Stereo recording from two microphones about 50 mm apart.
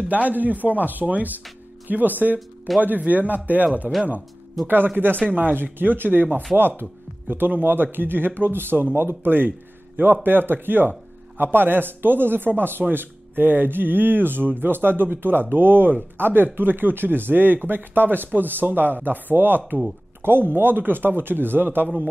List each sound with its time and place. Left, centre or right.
0.1 s speech: right